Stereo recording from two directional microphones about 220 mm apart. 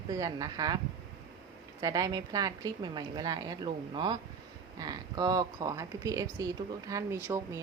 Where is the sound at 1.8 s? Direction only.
15° right (ahead or behind).